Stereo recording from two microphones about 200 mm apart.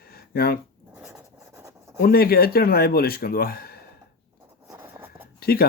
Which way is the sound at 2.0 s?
50° left (ahead or behind).